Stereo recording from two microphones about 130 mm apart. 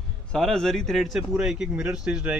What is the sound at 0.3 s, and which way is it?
Speech, 5° left (ahead or behind).